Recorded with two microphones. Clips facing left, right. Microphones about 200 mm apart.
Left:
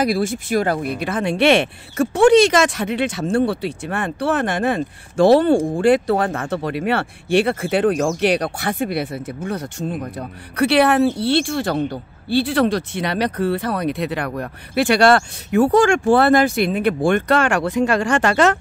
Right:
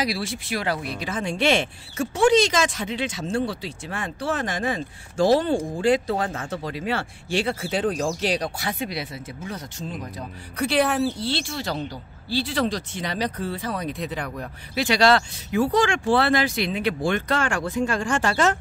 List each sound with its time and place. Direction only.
0.0 s speech: 50° left (ahead or behind); by 18.6 s 70° left (ahead or behind)